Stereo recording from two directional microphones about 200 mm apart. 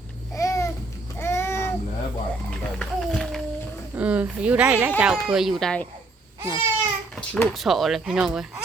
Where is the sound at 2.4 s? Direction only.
5° left (ahead or behind).